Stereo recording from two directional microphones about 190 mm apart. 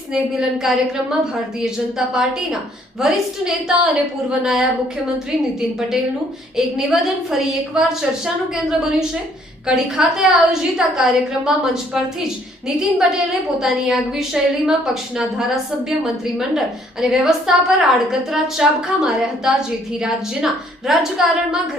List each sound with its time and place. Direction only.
0.1 s a woman's voice: centre (ahead or behind)
6.6 s a woman's voice: centre (ahead or behind)